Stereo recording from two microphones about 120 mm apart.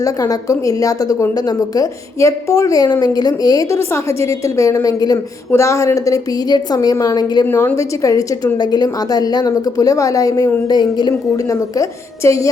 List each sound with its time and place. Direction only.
0.0 s a woman's voice: 30° left (ahead or behind)
7.4 s a woman's voice: 20° left (ahead or behind); by 11.1 s 35° left (ahead or behind)
11.8 s a woman's voice: 25° left (ahead or behind)